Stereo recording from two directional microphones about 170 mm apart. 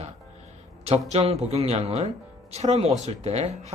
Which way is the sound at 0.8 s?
40° right (ahead or behind).